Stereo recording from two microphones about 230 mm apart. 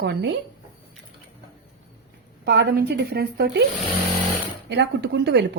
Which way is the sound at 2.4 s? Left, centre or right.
Right.